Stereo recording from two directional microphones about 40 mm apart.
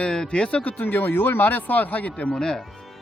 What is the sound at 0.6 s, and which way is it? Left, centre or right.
Speech, left.